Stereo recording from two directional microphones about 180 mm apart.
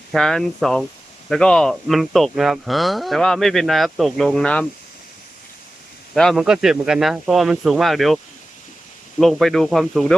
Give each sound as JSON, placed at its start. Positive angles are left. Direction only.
{"t": 0.1, "sound": "speech", "side_deg": 5}
{"t": 6.1, "sound": "speech", "side_deg": 5}